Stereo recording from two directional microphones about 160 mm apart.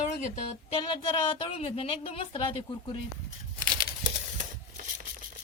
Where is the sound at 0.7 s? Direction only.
30° left (ahead or behind).